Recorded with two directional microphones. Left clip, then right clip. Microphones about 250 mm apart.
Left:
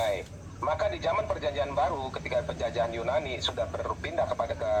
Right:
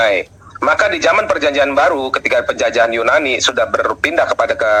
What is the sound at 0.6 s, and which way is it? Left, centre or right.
A man's voice, right.